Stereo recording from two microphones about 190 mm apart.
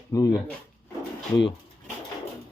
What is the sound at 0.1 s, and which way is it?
Speech, 20° left (ahead or behind).